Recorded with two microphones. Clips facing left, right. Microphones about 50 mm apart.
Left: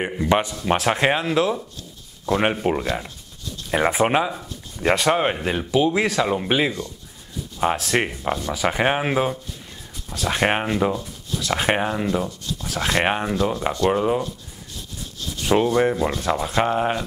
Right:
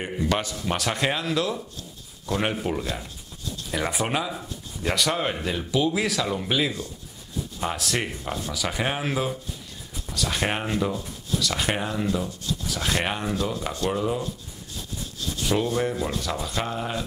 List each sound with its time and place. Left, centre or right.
0.0 s speech: left
2.2 s speech: left
2.8 s speech: left
7.6 s speech: centre
8.2 s speech: left
8.5 s speech: left
10.3 s speech: left
11.3 s speech: left
13.0 s speech: left
15.3 s speech: left